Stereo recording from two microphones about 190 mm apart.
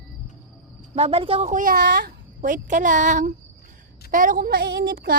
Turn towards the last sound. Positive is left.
turn(degrees=-50)  # may be behind; listen again after turning